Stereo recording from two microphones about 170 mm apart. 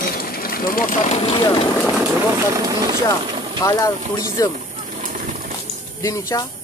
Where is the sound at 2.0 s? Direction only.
15° right (ahead or behind).